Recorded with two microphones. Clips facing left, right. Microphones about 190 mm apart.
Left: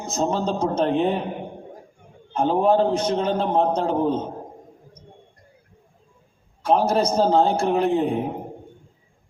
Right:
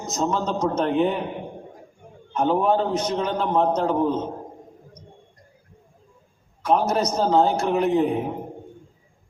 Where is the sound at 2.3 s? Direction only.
30° left (ahead or behind).